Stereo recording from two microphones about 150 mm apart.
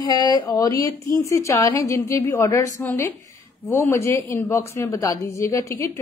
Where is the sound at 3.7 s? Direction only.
15° left (ahead or behind).